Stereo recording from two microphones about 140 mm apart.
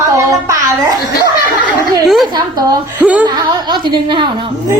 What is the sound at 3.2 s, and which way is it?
A woman's voice, 30° right (ahead or behind).